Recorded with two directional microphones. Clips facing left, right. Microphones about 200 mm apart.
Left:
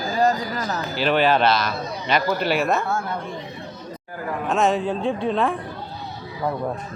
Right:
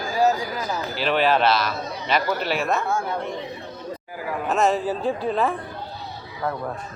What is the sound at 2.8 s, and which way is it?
Speech, 15° right (ahead or behind).